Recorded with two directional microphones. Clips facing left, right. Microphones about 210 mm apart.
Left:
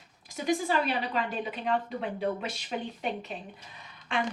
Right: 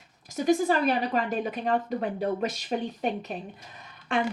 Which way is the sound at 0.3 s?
45° right (ahead or behind).